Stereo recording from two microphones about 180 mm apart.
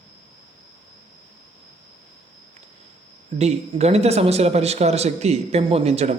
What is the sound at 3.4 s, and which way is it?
A man's voice, 35° right (ahead or behind).